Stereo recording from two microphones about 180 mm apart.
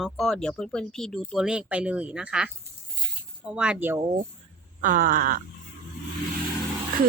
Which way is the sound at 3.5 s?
5° right (ahead or behind).